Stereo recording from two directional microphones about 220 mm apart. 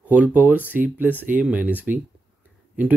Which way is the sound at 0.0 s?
5° right (ahead or behind).